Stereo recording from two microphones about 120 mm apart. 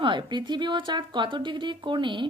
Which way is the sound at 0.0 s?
40° right (ahead or behind).